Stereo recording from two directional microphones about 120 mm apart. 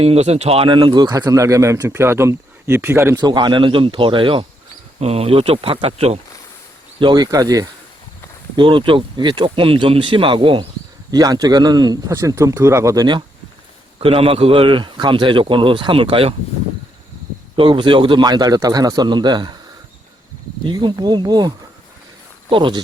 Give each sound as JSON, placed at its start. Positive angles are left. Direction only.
{"t": 0.0, "sound": "speech", "side_deg": -60}
{"t": 3.2, "sound": "speech", "side_deg": -35}
{"t": 4.9, "sound": "speech", "side_deg": -60}
{"t": 7.0, "sound": "a man's voice", "side_deg": -35}
{"t": 8.5, "sound": "speech", "side_deg": -45}
{"t": 11.1, "sound": "a man's voice", "side_deg": -30}
{"t": 12.1, "sound": "speech", "side_deg": -25}
{"t": 14.0, "sound": "speech", "side_deg": -50}
{"t": 17.6, "sound": "a man's voice", "side_deg": -45}
{"t": 20.7, "sound": "a man's voice", "side_deg": -35}